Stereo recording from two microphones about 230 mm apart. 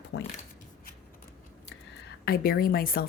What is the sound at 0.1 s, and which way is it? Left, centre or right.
Speech, left.